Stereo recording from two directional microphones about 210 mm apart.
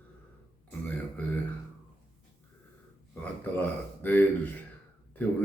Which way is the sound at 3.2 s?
5° left (ahead or behind).